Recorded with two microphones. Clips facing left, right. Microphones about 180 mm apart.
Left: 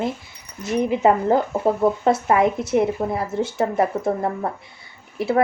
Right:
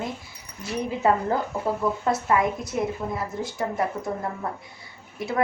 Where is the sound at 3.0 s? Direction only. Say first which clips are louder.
Left 6 dB; 50° left (ahead or behind).